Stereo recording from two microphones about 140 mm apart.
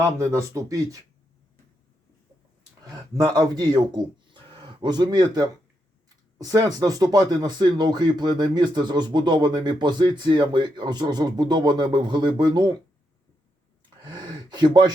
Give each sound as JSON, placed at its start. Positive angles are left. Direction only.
{"t": 0.0, "sound": "speech", "side_deg": -20}
{"t": 2.8, "sound": "speech", "side_deg": -30}
{"t": 14.0, "sound": "a sound", "side_deg": -30}